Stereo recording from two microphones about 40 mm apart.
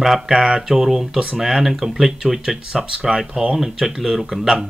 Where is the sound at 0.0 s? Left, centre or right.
Centre.